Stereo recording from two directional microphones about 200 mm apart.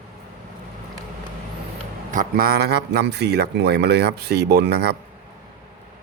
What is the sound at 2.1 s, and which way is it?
Speech, 45° right (ahead or behind).